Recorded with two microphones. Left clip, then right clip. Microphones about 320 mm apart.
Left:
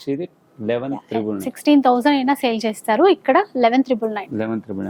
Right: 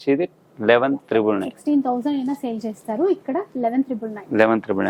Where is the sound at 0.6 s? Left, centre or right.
Right.